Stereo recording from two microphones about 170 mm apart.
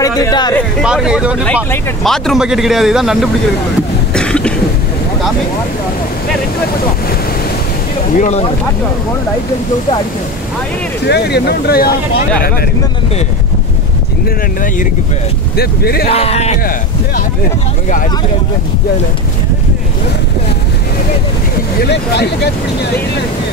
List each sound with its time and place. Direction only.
0.0 s speech: 20° left (ahead or behind)
0.8 s speech: 5° right (ahead or behind)
1.4 s speech: 15° left (ahead or behind)
2.0 s speech: centre (ahead or behind)
4.1 s cough: 5° left (ahead or behind)
8.1 s speech: 45° left (ahead or behind)
11.1 s speech: 75° left (ahead or behind)
15.5 s speech: 65° left (ahead or behind)
16.1 s speech: 35° left (ahead or behind)
21.8 s speech: 75° left (ahead or behind)